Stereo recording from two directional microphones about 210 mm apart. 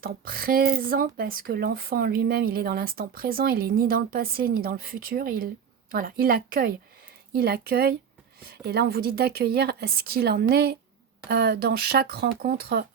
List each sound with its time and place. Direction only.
0.0 s speech: 45° right (ahead or behind)